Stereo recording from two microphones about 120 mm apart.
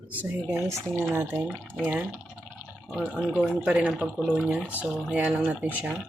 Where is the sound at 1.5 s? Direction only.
Centre (ahead or behind).